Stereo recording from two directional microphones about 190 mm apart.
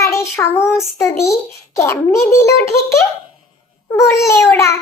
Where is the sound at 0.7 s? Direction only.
Centre (ahead or behind).